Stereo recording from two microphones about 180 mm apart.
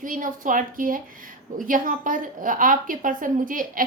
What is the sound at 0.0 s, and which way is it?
A woman's voice, 45° right (ahead or behind).